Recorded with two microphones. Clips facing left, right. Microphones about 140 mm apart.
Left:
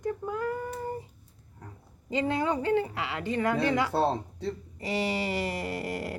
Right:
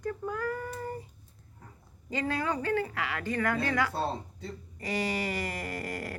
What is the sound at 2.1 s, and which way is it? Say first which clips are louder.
Speech: left 4 dB; 20° left (ahead or behind).